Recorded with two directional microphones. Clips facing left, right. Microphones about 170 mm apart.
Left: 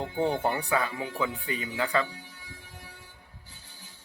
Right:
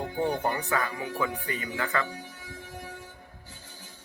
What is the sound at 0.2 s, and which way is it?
Speech, 25° left (ahead or behind).